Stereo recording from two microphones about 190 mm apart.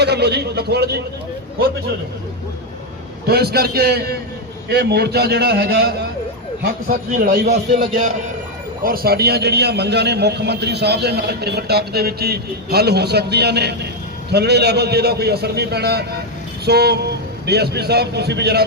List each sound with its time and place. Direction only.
0.0 s a man's voice: 60° right (ahead or behind)
3.2 s a man's voice: 55° right (ahead or behind)
7.4 s a man's voice: 55° right (ahead or behind)
8.8 s a man's voice: 50° right (ahead or behind)